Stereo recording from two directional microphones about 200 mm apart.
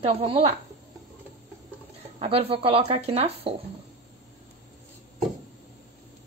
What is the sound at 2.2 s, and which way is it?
Speech, 30° right (ahead or behind).